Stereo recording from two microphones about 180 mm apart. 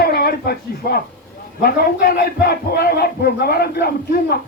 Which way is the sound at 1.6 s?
55° left (ahead or behind).